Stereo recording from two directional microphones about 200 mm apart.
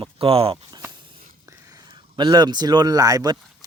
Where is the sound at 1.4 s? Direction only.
15° right (ahead or behind).